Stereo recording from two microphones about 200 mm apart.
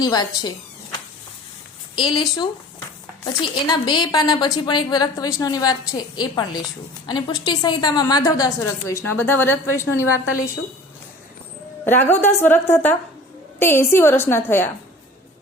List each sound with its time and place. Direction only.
0.0 s a woman's voice: 20° left (ahead or behind)
2.0 s a woman's voice: 25° left (ahead or behind)
3.7 s a woman's voice: 20° left (ahead or behind)
11.9 s a woman's voice: 10° left (ahead or behind)